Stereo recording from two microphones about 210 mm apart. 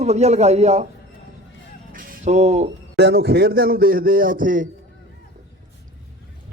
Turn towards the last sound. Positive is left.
turn(degrees=-40)  # may be behind; listen again after turning